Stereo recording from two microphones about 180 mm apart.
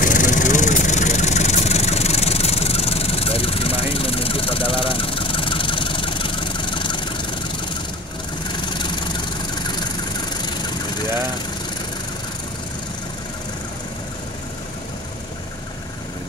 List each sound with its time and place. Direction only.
0.0 s vehicle: 45° left (ahead or behind); by 7.2 s 25° left (ahead or behind)
8.5 s vehicle: 25° left (ahead or behind)